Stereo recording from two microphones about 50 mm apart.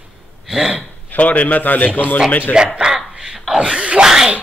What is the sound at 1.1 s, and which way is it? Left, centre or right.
Speech, left.